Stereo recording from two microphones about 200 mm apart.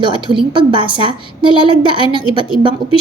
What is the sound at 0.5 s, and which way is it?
A woman's voice, 25° right (ahead or behind).